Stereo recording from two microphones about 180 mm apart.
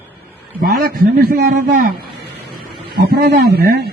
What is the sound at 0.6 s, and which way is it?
A man's voice, 55° right (ahead or behind).